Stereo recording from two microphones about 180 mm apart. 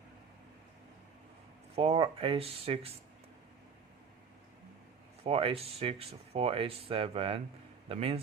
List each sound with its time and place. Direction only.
1.7 s speech: 35° right (ahead or behind)
5.2 s speech: 30° right (ahead or behind)